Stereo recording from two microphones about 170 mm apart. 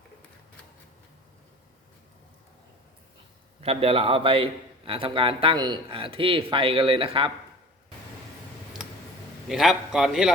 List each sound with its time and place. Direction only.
3.6 s speech: 35° right (ahead or behind)
9.5 s a man's voice: centre (ahead or behind)